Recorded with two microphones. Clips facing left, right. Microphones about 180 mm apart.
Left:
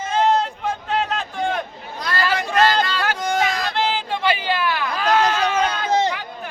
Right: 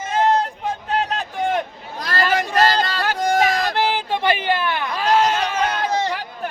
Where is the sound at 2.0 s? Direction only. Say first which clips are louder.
Right 2 dB; 45° right (ahead or behind).